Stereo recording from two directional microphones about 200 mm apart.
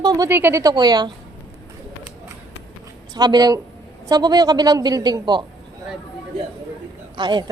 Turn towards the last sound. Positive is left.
turn(degrees=-20)  # may be behind; listen again after turning